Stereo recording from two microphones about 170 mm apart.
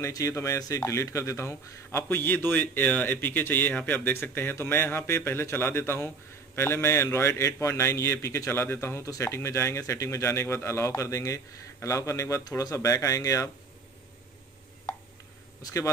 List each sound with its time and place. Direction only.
0.0 s speech: 15° left (ahead or behind)
15.6 s a man's voice: 20° left (ahead or behind)